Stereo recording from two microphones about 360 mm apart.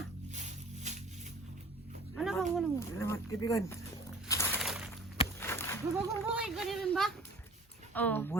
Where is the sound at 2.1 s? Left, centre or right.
Centre.